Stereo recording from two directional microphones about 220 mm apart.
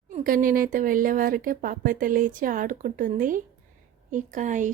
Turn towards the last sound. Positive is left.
turn(degrees=-35)  # may be behind; listen again after turning